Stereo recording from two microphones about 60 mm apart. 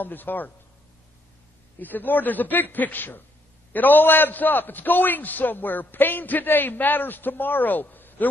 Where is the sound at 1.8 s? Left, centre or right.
Left.